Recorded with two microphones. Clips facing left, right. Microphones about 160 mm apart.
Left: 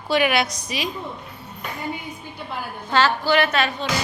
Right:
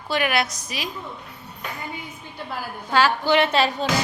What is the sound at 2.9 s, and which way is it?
Speech, 15° right (ahead or behind).